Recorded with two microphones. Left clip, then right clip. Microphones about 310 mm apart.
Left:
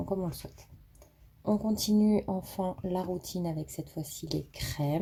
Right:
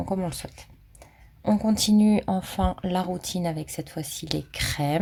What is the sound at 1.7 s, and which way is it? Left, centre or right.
Speech, right.